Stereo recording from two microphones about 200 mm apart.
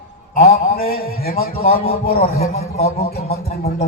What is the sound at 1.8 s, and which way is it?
A man's voice, 30° left (ahead or behind).